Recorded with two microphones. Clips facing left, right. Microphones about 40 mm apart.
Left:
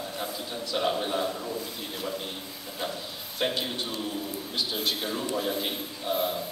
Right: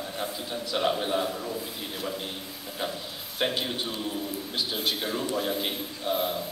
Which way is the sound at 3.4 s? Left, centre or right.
Centre.